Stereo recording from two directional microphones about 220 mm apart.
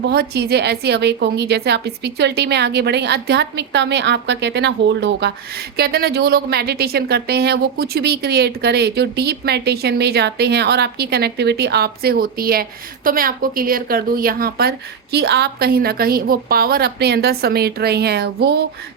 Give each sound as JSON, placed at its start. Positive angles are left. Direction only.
{"t": 0.0, "sound": "a woman's voice", "side_deg": -50}